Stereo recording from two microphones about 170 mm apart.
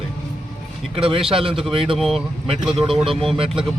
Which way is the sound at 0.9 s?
30° right (ahead or behind).